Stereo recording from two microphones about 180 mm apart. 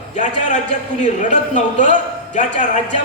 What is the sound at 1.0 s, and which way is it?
A man's voice, 45° left (ahead or behind).